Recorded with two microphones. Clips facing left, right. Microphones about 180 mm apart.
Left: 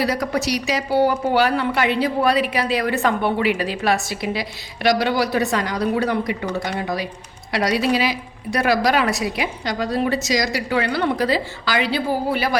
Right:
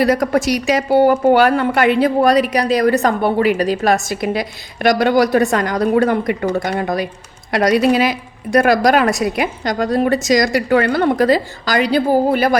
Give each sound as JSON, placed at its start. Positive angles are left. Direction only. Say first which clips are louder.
{"t": 0.0, "sound": "speech", "louder": "right 7 dB", "side_deg": -50}